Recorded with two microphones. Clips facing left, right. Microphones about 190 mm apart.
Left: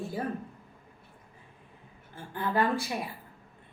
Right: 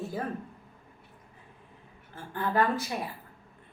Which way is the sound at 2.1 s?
15° left (ahead or behind).